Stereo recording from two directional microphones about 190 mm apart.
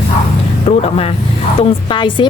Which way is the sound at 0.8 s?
30° left (ahead or behind).